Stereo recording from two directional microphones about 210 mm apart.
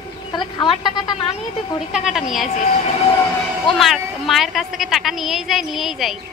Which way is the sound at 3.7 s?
Centre (ahead or behind).